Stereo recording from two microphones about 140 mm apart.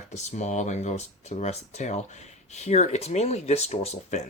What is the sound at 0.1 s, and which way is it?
Speech, 55° left (ahead or behind).